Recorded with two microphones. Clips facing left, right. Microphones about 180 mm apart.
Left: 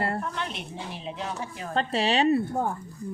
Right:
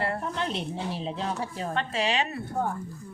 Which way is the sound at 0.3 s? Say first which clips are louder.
Right 4 dB; 30° right (ahead or behind).